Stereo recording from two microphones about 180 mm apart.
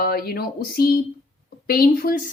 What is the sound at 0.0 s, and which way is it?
Speech, 55° left (ahead or behind).